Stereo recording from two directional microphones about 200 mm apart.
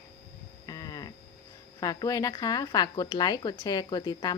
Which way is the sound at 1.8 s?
20° left (ahead or behind).